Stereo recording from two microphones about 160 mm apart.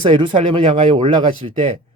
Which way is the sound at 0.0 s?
30° right (ahead or behind).